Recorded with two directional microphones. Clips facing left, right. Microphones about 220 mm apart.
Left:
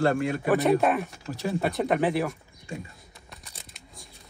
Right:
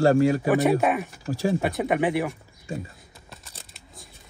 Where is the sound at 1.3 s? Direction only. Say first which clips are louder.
Right 6 dB; 30° right (ahead or behind).